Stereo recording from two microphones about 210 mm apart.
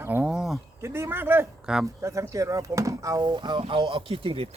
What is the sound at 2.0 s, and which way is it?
Speech, 15° right (ahead or behind).